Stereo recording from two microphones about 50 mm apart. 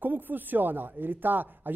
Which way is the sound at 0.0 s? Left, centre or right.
Right.